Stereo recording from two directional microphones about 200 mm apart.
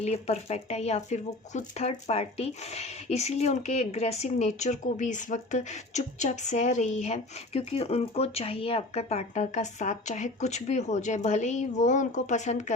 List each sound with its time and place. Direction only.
0.0 s speech: 30° left (ahead or behind)